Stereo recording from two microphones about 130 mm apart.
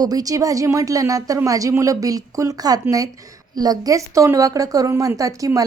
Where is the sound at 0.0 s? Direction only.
30° right (ahead or behind).